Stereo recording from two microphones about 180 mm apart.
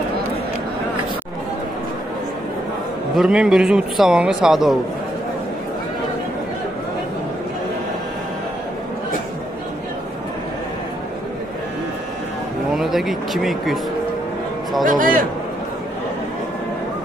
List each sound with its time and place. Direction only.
3.2 s a man's voice: 5° right (ahead or behind)
12.7 s speech: centre (ahead or behind)
14.9 s a man's voice: 50° right (ahead or behind)